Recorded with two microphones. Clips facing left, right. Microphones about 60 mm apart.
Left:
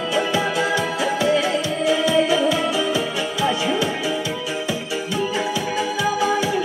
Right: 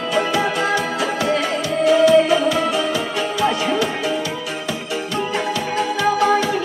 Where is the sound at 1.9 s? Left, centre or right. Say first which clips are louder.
Right 6 dB; centre.